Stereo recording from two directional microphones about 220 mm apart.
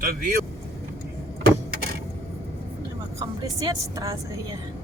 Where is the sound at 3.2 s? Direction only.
15° right (ahead or behind).